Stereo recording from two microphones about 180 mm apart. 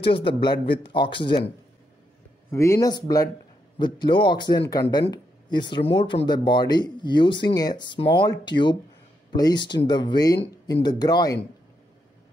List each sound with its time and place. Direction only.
0.4 s speech: 25° left (ahead or behind)
2.5 s speech: 15° left (ahead or behind)